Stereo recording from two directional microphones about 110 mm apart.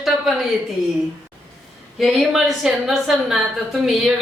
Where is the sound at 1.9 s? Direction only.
Centre (ahead or behind).